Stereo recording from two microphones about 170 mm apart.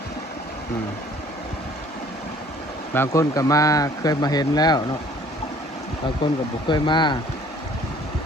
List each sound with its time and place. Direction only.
2.9 s speech: 15° left (ahead or behind)
6.7 s speech: 25° left (ahead or behind)